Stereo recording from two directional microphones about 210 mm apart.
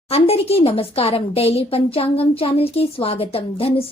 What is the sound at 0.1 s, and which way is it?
Speech, 30° left (ahead or behind).